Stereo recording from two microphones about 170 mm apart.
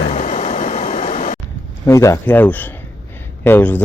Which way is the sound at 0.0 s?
40° left (ahead or behind).